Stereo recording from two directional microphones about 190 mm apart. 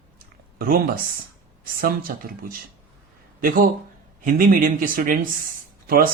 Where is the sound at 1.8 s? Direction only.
50° right (ahead or behind).